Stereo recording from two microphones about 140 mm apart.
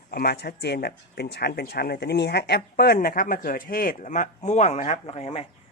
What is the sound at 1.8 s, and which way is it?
Speech, 90° left.